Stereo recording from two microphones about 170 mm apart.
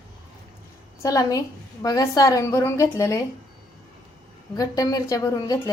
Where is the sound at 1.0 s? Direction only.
20° left (ahead or behind).